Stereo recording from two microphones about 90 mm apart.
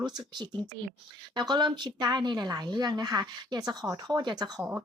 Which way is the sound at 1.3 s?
55° right (ahead or behind).